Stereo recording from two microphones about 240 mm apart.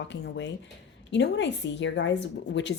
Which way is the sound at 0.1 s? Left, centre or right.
Left.